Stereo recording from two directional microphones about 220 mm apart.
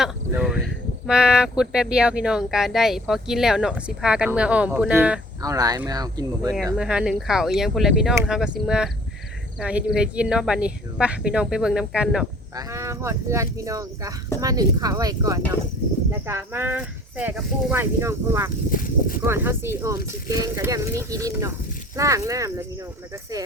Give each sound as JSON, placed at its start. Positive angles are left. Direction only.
{"t": 0.0, "sound": "speech", "side_deg": -5}
{"t": 5.4, "sound": "speech", "side_deg": -15}
{"t": 6.7, "sound": "speech", "side_deg": -5}
{"t": 12.5, "sound": "speech", "side_deg": -15}